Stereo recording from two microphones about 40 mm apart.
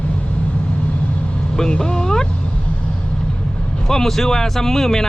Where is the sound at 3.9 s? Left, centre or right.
Centre.